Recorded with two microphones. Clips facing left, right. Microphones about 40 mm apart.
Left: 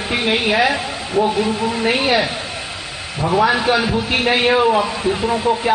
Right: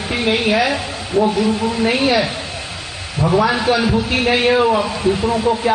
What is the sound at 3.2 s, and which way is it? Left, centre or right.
Speech, left.